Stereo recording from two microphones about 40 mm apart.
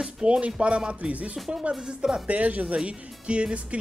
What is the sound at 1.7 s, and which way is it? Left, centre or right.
Speech, right.